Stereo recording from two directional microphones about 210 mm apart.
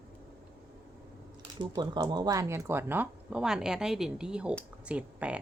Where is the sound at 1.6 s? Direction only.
20° right (ahead or behind).